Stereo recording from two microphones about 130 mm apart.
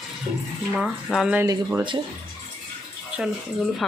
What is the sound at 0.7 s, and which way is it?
Speech, 5° right (ahead or behind).